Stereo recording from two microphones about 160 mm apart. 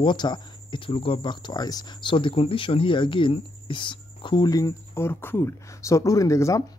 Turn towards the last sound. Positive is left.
turn(degrees=20)  # may be behind; listen again after turning